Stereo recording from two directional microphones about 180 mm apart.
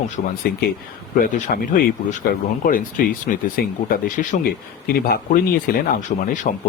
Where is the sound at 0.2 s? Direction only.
40° left (ahead or behind).